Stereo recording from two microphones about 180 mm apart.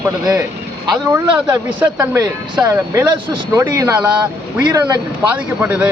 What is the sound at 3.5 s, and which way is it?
Speech, 10° right (ahead or behind).